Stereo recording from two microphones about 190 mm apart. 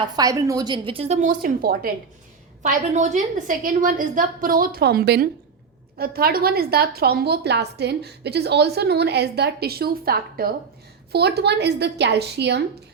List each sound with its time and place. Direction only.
0.2 s a woman's voice: 20° right (ahead or behind); by 12.6 s 60° right (ahead or behind)